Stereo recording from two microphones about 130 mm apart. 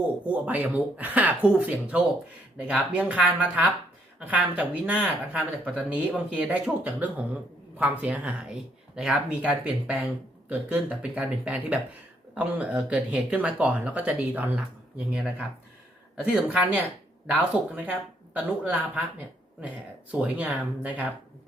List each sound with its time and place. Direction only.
0.3 s speech: 10° right (ahead or behind)